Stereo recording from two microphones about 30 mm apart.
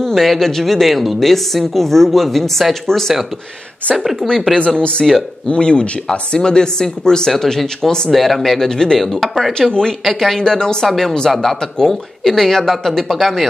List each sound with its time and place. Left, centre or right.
0.0 s a woman's voice: centre
3.9 s speech: centre
4.7 s speech: left
8.1 s speech: centre
8.5 s a woman's voice: centre
9.5 s a woman's voice: left
11.2 s a woman's voice: centre